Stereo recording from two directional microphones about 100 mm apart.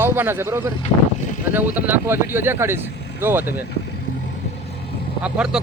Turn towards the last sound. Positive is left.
turn(degrees=-10)  # may be behind; listen again after turning